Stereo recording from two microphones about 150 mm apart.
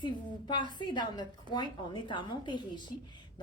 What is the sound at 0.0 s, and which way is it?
A woman's voice, 30° left (ahead or behind).